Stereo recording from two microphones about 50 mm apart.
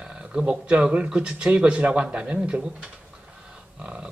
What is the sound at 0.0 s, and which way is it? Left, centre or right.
Speech, centre.